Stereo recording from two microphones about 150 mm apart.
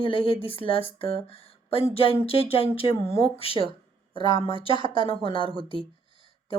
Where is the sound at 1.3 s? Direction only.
40° left (ahead or behind).